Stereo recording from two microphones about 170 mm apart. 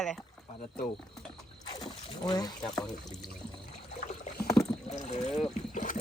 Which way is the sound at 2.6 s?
5° left (ahead or behind).